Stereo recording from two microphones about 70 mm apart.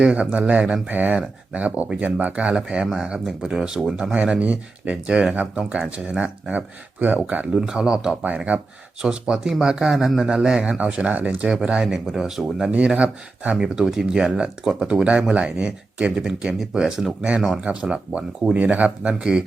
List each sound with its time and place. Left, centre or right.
0.1 s speech: centre
4.1 s speech: centre
13.0 s speech: centre